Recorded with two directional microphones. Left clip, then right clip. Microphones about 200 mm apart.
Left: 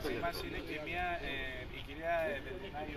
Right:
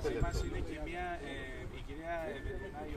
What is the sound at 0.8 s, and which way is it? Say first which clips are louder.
Speech: left 4 dB; 15° left (ahead or behind).